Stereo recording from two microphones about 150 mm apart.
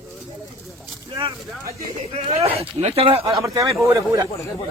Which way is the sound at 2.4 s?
45° right (ahead or behind).